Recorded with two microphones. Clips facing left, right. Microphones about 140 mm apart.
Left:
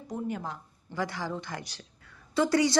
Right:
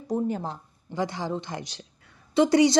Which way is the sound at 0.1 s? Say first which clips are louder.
Right 7 dB; 35° right (ahead or behind).